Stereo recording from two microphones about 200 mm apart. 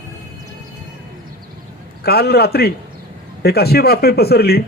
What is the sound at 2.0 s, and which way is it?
A man's voice, 50° left (ahead or behind).